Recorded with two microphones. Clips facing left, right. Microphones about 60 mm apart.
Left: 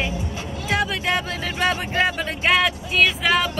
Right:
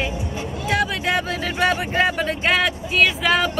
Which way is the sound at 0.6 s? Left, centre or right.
Centre.